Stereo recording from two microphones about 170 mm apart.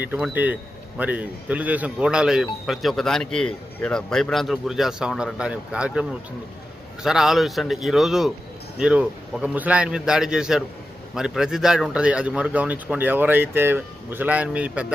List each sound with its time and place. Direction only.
0.0 s a man's voice: 10° right (ahead or behind)